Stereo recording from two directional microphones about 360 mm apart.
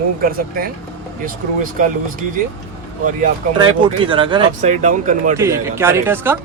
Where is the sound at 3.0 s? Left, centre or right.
Right.